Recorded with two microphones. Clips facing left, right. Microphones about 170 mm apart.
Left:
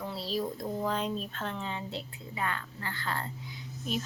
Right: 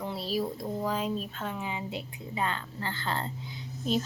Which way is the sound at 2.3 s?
25° right (ahead or behind).